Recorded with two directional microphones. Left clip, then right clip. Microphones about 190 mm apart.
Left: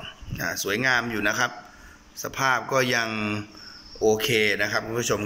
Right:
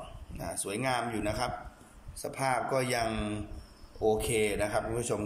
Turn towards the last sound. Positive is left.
turn(degrees=-5)  # may be behind; listen again after turning